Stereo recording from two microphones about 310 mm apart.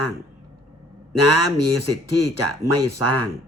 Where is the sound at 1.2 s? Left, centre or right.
Right.